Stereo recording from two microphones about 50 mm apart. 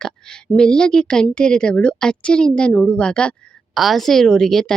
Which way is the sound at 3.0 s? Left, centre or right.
Centre.